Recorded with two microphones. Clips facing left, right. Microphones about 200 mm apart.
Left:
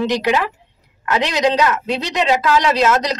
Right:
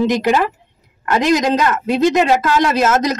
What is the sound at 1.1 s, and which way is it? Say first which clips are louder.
A man's voice: right 2 dB; 50° right (ahead or behind).